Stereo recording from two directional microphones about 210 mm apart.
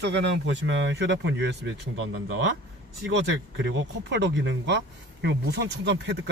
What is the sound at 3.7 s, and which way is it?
Speech, 60° right (ahead or behind).